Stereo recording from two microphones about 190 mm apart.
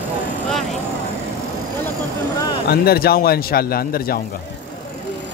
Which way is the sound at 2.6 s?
55° left (ahead or behind).